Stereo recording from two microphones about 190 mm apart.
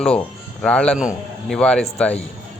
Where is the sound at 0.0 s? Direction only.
5° left (ahead or behind).